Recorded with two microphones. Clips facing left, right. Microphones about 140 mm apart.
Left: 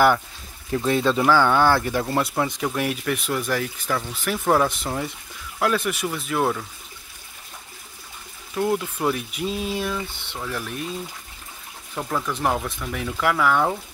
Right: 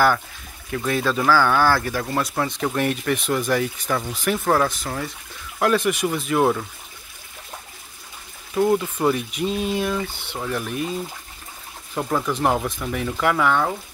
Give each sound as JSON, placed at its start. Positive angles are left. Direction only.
{"t": 0.7, "sound": "speech", "side_deg": 25}
{"t": 2.3, "sound": "speech", "side_deg": 10}
{"t": 4.6, "sound": "speech", "side_deg": 15}
{"t": 5.6, "sound": "speech", "side_deg": 0}
{"t": 8.5, "sound": "speech", "side_deg": -5}
{"t": 11.9, "sound": "speech", "side_deg": -10}